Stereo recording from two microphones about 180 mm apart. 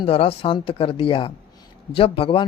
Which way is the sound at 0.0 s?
30° left (ahead or behind).